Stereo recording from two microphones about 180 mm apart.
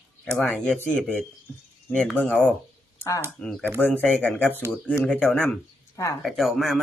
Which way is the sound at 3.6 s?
10° right (ahead or behind).